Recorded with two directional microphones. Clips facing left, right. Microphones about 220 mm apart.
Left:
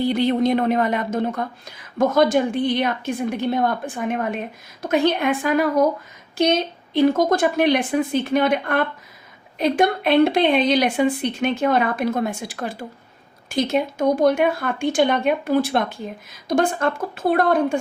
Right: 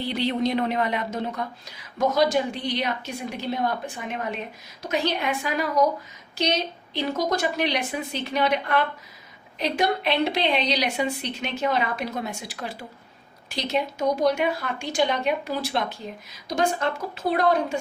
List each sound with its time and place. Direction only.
0.0 s a woman's voice: 50° left (ahead or behind)